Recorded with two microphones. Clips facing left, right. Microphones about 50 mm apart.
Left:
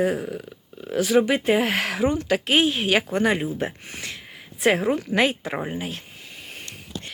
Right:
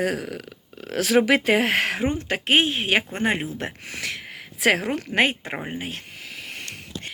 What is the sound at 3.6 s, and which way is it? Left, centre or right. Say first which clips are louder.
Speech: left 2 dB; right.